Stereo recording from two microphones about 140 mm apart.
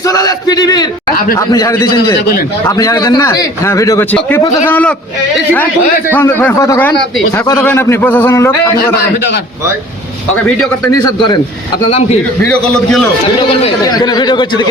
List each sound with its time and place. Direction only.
0.0 s a man's voice: 25° left (ahead or behind)
6.1 s a man's voice: 15° left (ahead or behind)
10.9 s a man's voice: 30° left (ahead or behind)
11.9 s a man's voice: 45° left (ahead or behind)
12.5 s a man's voice: 5° left (ahead or behind)
13.8 s a man's voice: 30° left (ahead or behind)